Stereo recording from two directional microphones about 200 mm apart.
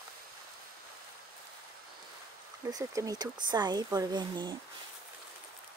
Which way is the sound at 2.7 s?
15° right (ahead or behind).